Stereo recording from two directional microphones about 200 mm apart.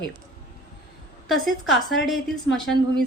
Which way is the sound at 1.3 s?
Centre (ahead or behind).